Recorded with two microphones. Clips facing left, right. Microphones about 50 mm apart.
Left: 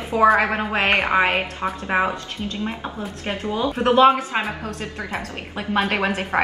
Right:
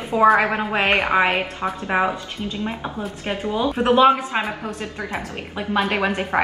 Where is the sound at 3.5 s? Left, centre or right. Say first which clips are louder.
Even; centre.